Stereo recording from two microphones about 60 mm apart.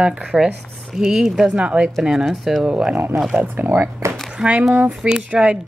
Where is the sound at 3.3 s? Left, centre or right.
Right.